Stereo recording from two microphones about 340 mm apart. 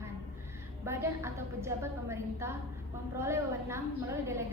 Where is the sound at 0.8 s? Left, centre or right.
Centre.